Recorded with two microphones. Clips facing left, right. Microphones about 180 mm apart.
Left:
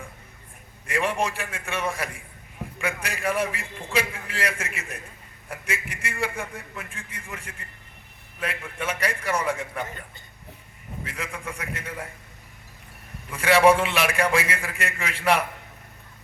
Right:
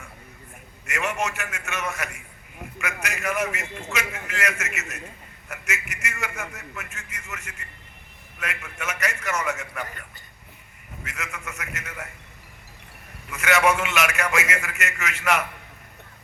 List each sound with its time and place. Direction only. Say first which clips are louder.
0.9 s a man's voice: left 2 dB; 30° left (ahead or behind)
11.0 s a man's voice: left 2 dB; 30° left (ahead or behind)
13.3 s a man's voice: left 4 dB; 30° left (ahead or behind)